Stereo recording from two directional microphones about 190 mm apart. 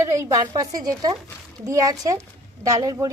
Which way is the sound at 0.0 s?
15° right (ahead or behind).